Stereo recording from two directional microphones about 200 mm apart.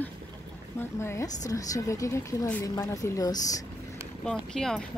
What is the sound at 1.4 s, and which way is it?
A woman's voice, 15° left (ahead or behind).